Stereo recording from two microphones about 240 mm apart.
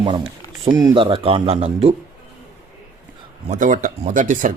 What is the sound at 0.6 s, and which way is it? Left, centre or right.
Speech, centre.